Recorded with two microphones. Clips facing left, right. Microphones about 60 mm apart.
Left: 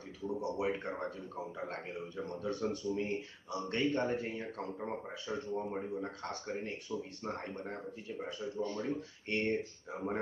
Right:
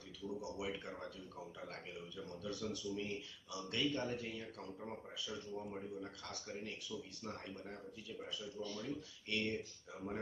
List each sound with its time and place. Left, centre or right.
0.2 s a man's voice: left